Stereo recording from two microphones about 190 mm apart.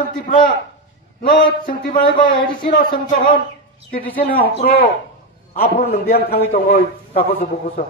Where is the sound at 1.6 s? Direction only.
45° left (ahead or behind).